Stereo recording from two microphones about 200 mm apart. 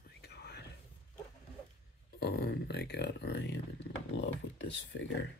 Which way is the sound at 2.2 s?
50° left (ahead or behind).